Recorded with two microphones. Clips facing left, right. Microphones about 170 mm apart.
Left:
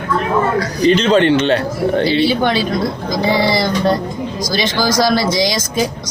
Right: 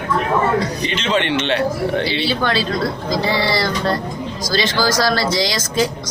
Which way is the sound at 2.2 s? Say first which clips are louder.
Left 4 dB; 15° left (ahead or behind).